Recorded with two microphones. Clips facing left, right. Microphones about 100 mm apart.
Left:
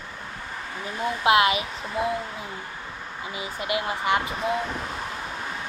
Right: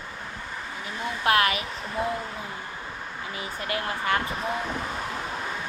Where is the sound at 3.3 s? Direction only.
15° left (ahead or behind).